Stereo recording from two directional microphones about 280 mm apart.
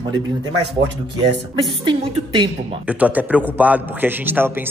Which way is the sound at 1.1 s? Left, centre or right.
Centre.